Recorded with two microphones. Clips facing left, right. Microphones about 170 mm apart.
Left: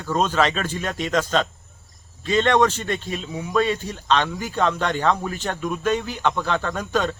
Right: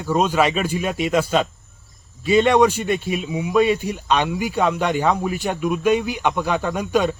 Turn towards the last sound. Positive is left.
turn(degrees=-10)  # may be behind; listen again after turning